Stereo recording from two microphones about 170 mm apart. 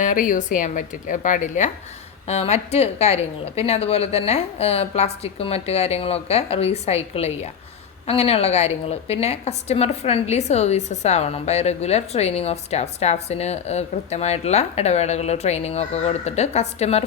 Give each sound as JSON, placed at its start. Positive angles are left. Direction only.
{"t": 0.0, "sound": "a woman's voice", "side_deg": 50}